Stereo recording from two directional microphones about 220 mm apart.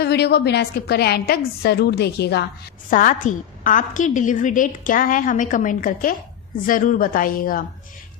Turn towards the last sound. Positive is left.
turn(degrees=40)  # may be behind; listen again after turning